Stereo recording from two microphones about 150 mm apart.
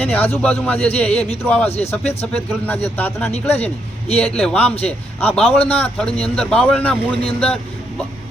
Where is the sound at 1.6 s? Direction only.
45° left (ahead or behind).